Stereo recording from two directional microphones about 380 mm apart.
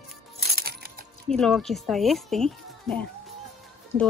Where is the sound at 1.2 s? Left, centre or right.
Centre.